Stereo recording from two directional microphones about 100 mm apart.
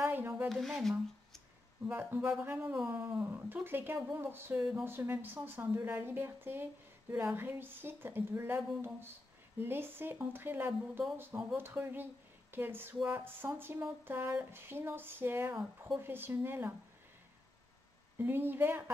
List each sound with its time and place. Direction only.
0.0 s a sound: 25° right (ahead or behind)
0.5 s speech: centre (ahead or behind)
1.9 s a woman's voice: 20° right (ahead or behind)
18.2 s a woman's voice: 20° right (ahead or behind)